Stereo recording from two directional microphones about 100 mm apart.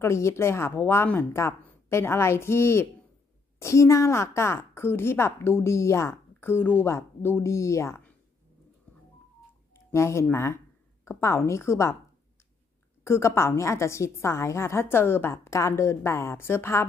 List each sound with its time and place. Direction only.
0.0 s a woman's voice: 30° left (ahead or behind)
9.9 s a woman's voice: 30° left (ahead or behind)
13.0 s a woman's voice: 25° left (ahead or behind)